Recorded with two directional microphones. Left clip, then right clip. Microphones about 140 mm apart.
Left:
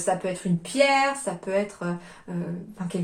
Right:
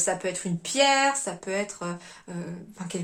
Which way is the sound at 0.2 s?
35° right (ahead or behind).